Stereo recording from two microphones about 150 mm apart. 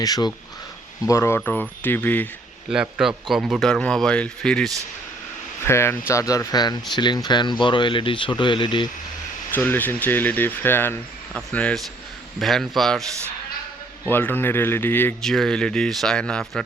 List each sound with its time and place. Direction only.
0.0 s speech: 25° left (ahead or behind)
2.6 s speech: 5° right (ahead or behind)
5.6 s speech: 15° left (ahead or behind)
9.6 s speech: 10° left (ahead or behind)
14.1 s speech: 15° left (ahead or behind)
15.2 s speech: centre (ahead or behind)